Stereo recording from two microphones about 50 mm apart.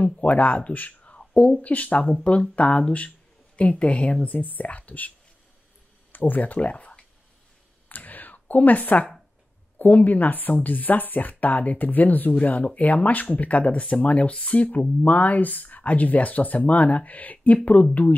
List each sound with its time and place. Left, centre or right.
0.0 s speech: left
6.1 s speech: left
7.9 s a sound: left
9.8 s speech: left